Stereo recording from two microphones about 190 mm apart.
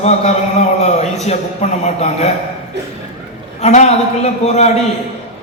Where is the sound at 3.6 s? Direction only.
35° left (ahead or behind).